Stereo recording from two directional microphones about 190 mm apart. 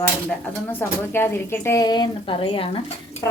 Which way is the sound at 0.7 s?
10° left (ahead or behind).